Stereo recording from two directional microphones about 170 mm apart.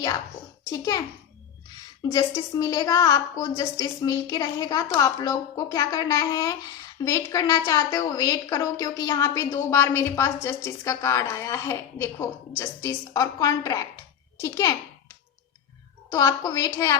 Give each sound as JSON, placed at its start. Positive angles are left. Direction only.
{"t": 0.6, "sound": "a child's voice", "side_deg": 20}
{"t": 2.0, "sound": "a woman's voice", "side_deg": 20}
{"t": 16.0, "sound": "a woman's voice", "side_deg": 20}